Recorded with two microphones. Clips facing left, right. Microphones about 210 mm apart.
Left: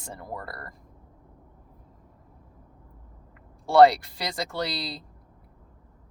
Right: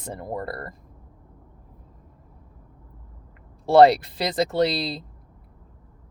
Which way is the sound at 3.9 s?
25° right (ahead or behind).